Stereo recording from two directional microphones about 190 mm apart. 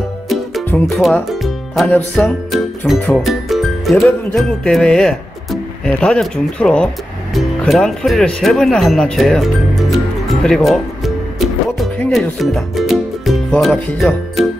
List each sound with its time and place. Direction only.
0.7 s music: 10° left (ahead or behind)
1.0 s music: centre (ahead or behind)
2.9 s speech: centre (ahead or behind)
11.3 s music: centre (ahead or behind)